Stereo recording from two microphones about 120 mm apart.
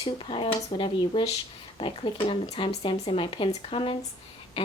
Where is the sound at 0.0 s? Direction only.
45° left (ahead or behind).